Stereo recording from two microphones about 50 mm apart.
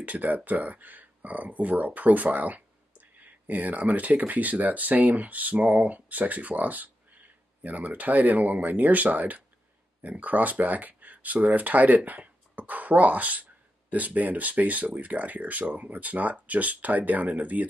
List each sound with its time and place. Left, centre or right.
0.0 s speech: right